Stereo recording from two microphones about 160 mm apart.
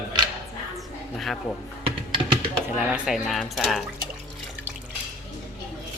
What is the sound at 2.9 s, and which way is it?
Speech, centre (ahead or behind).